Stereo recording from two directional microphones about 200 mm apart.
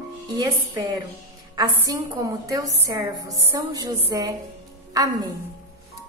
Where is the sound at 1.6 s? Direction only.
15° right (ahead or behind).